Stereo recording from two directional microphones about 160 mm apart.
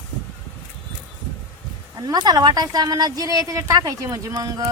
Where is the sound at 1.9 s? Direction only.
25° right (ahead or behind).